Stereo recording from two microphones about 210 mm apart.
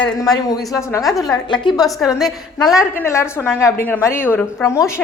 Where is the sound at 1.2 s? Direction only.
20° left (ahead or behind).